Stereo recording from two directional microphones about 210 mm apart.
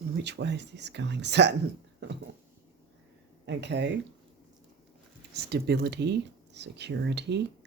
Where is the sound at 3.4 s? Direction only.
55° right (ahead or behind).